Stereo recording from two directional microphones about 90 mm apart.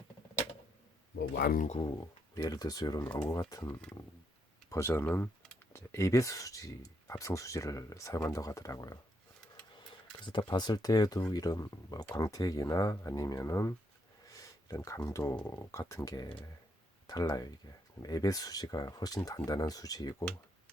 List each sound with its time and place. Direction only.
2.0 s speech: 45° left (ahead or behind)
3.7 s speech: 15° left (ahead or behind); by 9.0 s 40° left (ahead or behind)
10.2 s speech: 55° left (ahead or behind); by 13.7 s 35° left (ahead or behind)
14.3 s a sound: 40° left (ahead or behind)
15.4 s speech: 30° left (ahead or behind)